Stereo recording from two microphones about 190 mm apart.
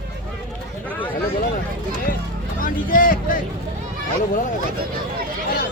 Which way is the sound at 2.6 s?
45° left (ahead or behind).